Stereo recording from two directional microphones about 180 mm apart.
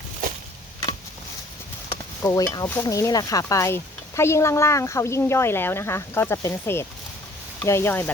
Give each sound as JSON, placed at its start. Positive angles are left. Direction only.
{"t": 2.2, "sound": "speech", "side_deg": 15}